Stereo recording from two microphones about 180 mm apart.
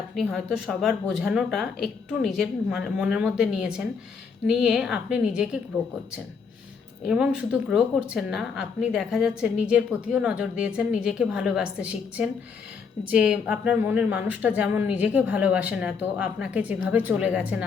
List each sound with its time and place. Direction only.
0.2 s speech: centre (ahead or behind)
7.0 s a woman's voice: 5° right (ahead or behind)